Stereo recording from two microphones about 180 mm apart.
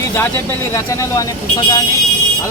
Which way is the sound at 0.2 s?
15° left (ahead or behind).